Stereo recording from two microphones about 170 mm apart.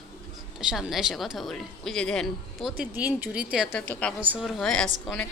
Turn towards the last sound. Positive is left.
turn(degrees=5)  # may be behind; listen again after turning